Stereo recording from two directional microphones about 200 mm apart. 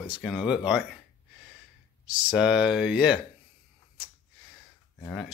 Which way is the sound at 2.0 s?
5° right (ahead or behind).